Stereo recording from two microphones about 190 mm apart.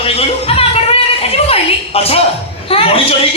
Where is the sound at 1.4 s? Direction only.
30° left (ahead or behind).